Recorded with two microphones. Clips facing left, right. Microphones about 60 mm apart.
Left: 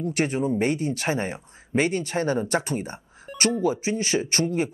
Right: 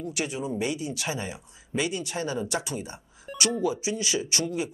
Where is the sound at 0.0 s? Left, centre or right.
Left.